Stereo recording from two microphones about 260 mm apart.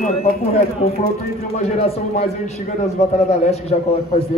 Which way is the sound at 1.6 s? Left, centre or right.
Left.